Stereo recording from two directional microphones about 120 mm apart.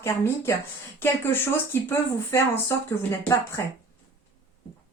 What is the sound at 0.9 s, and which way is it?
A woman's voice, 20° left (ahead or behind).